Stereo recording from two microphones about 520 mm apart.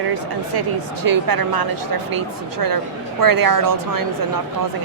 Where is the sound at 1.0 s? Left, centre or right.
Right.